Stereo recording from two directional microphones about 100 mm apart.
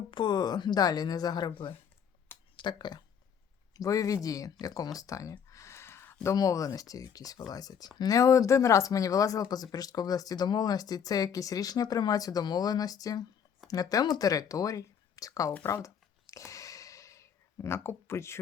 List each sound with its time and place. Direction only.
0.1 s a woman's voice: 50° left (ahead or behind)
2.6 s speech: 50° left (ahead or behind)
3.8 s speech: 35° left (ahead or behind)
4.6 s a sound: 35° left (ahead or behind)
6.2 s speech: 35° left (ahead or behind)
15.6 s a sound: 30° left (ahead or behind)